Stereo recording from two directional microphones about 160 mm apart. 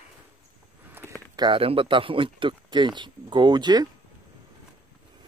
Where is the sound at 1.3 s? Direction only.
30° right (ahead or behind).